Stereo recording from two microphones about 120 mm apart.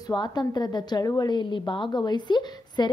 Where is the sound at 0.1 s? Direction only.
35° left (ahead or behind).